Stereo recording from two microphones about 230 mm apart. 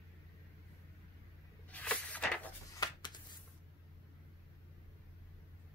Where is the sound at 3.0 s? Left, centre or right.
Centre.